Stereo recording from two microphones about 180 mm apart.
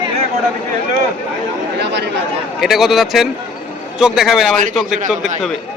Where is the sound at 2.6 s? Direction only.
Centre (ahead or behind).